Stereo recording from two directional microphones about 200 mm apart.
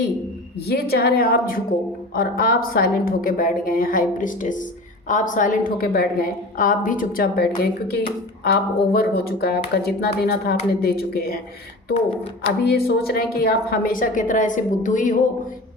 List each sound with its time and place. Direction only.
0.7 s a woman's voice: 50° left (ahead or behind)
12.6 s a woman's voice: 50° left (ahead or behind)